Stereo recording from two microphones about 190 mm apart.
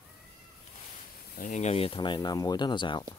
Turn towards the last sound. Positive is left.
turn(degrees=25)  # may be behind; listen again after turning